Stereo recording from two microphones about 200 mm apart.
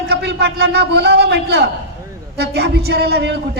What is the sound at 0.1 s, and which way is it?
A man's voice, 55° right (ahead or behind).